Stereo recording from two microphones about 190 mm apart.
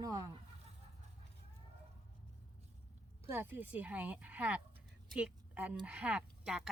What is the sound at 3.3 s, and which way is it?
A woman's voice, 10° right (ahead or behind).